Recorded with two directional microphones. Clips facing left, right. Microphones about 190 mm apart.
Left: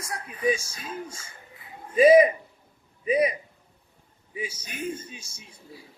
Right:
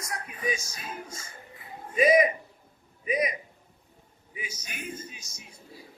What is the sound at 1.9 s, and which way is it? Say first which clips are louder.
Speech: left 6 dB; 30° left (ahead or behind).